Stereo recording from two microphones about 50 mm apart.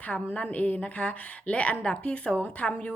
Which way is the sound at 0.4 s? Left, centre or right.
Left.